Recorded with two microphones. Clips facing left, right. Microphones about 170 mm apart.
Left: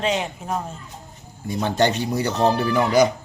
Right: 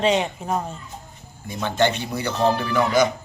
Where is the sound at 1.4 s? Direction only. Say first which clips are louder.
Left 1 dB; 40° left (ahead or behind).